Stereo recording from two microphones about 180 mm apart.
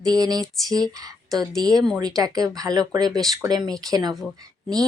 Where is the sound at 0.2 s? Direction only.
20° right (ahead or behind).